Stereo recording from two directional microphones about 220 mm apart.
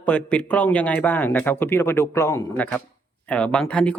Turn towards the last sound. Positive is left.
turn(degrees=5)  # may be behind; listen again after turning